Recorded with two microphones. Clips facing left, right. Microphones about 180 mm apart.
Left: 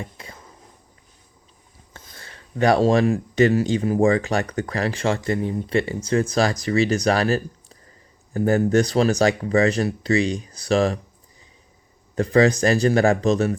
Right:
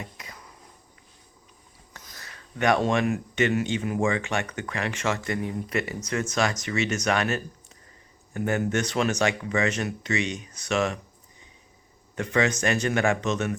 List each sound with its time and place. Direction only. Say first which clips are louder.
0.0 s a sound: left 4 dB; 30° left (ahead or behind)
1.9 s speech: left 3 dB; 30° left (ahead or behind)
12.1 s speech: left 8 dB; 35° left (ahead or behind)